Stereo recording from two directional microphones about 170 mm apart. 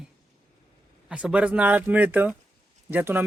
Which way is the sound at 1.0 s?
5° right (ahead or behind).